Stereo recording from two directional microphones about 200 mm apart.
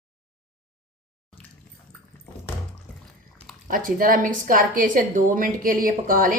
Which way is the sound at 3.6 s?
45° right (ahead or behind).